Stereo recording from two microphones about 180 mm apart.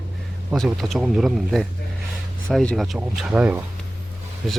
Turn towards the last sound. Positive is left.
turn(degrees=0)  # may be behind; listen again after turning